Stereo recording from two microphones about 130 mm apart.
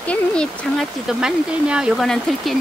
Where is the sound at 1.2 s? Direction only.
5° right (ahead or behind).